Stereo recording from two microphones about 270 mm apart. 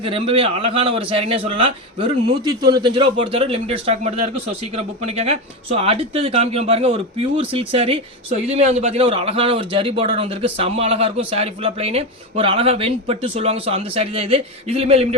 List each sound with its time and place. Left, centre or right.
0.0 s a man's voice: centre